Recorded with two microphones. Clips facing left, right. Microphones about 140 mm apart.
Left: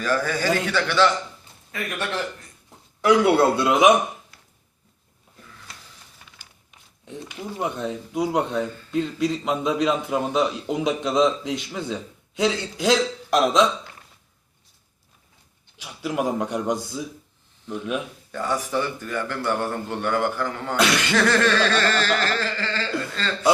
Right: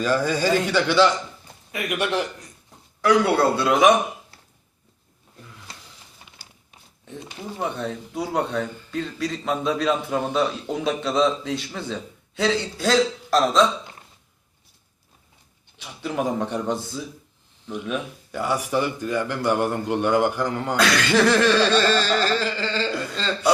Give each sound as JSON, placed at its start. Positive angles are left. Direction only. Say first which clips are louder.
{"t": 0.0, "sound": "speech", "louder": "right 2 dB", "side_deg": -15}
{"t": 3.0, "sound": "a man's voice", "louder": "left 1 dB", "side_deg": 20}
{"t": 7.6, "sound": "a man's voice", "louder": "even", "side_deg": 15}
{"t": 15.8, "sound": "a man's voice", "louder": "left 1 dB", "side_deg": 5}
{"t": 18.3, "sound": "speech", "louder": "right 2 dB", "side_deg": -10}
{"t": 20.7, "sound": "a man's voice", "louder": "left 1 dB", "side_deg": 20}
{"t": 21.1, "sound": "a sound", "louder": "right 5 dB", "side_deg": -10}